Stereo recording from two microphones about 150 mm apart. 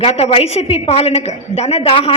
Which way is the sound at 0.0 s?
45° left (ahead or behind).